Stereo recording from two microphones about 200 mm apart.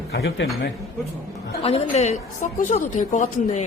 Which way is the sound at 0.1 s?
55° left (ahead or behind).